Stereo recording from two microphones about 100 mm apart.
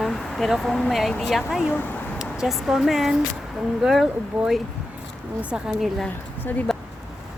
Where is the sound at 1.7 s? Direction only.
20° left (ahead or behind).